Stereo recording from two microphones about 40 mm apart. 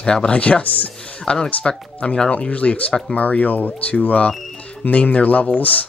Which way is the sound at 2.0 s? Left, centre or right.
Left.